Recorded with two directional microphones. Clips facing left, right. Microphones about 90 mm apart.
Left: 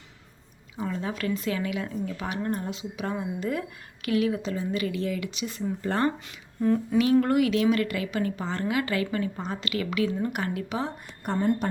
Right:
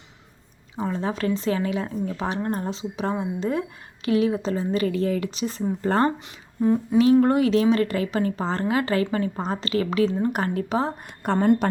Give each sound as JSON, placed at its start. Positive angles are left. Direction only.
{"t": 0.8, "sound": "speech", "side_deg": -30}
{"t": 6.6, "sound": "humming", "side_deg": -20}
{"t": 7.0, "sound": "speech", "side_deg": -30}
{"t": 11.2, "sound": "a woman's voice", "side_deg": -80}